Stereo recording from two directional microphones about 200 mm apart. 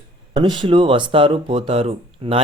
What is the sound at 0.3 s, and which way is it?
Speech, 20° right (ahead or behind).